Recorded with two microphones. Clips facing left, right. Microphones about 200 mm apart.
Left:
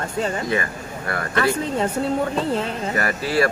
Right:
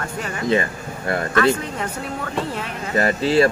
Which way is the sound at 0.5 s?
25° right (ahead or behind).